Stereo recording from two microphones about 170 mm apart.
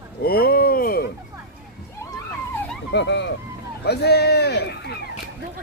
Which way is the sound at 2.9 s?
90° left.